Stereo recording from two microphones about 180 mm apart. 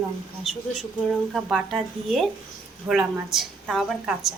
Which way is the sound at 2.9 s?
20° right (ahead or behind).